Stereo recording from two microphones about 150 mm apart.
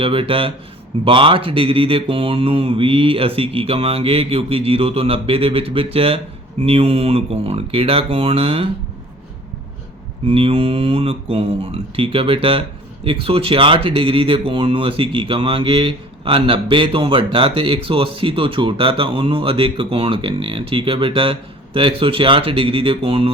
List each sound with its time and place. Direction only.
0.0 s speech: 35° right (ahead or behind)
10.2 s speech: 35° right (ahead or behind)